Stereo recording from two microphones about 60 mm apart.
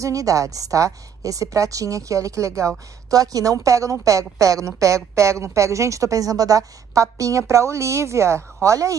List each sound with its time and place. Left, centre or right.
0.0 s a woman's voice: right
3.1 s a woman's voice: right
8.6 s a woman's voice: right